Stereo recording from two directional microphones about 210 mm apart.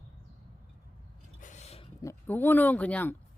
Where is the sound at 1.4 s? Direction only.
35° left (ahead or behind).